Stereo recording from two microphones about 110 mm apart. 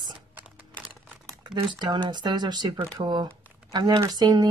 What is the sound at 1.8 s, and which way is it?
Speech, 45° right (ahead or behind).